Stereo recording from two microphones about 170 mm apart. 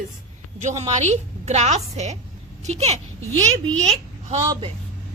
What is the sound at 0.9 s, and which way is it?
A woman's voice, 45° right (ahead or behind).